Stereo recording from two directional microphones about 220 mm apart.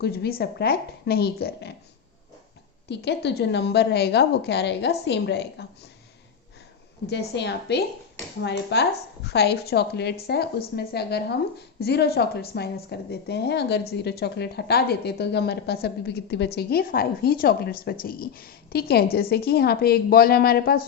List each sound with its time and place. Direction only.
0.0 s a woman's voice: 45° left (ahead or behind)
2.9 s a woman's voice: 50° left (ahead or behind)
7.1 s a woman's voice: 50° left (ahead or behind)